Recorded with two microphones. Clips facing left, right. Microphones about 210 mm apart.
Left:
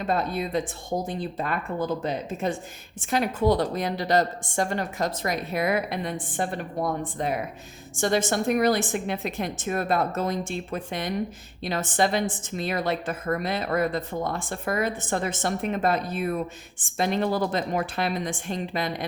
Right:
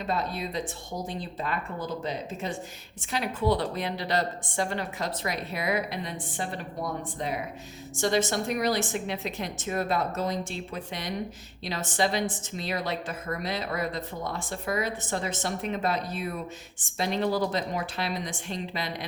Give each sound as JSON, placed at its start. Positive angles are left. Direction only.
{"t": 0.0, "sound": "a woman's voice", "side_deg": 50}